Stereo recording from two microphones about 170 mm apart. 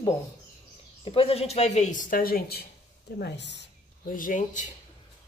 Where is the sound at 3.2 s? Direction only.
90° left.